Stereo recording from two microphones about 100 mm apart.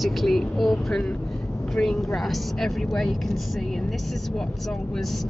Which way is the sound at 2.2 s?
Centre (ahead or behind).